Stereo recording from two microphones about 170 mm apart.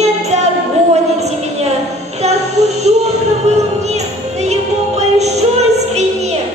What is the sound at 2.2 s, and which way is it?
Music, 40° right (ahead or behind).